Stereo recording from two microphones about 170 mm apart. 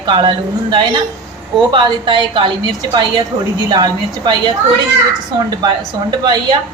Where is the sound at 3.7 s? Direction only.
25° right (ahead or behind).